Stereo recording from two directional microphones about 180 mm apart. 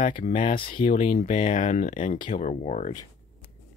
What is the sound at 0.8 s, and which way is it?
Speech, 45° left (ahead or behind).